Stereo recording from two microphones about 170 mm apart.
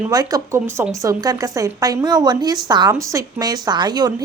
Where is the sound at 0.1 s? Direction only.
20° right (ahead or behind).